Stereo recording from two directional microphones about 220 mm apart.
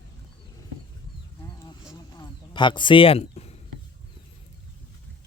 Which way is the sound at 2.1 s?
20° left (ahead or behind).